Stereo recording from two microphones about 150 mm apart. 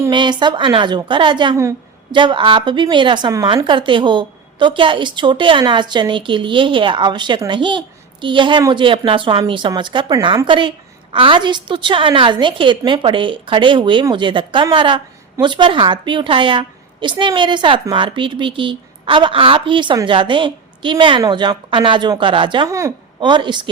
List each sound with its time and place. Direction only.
0.1 s a woman's voice: 30° right (ahead or behind)